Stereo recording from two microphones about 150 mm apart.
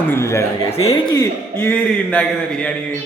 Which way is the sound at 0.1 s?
20° left (ahead or behind).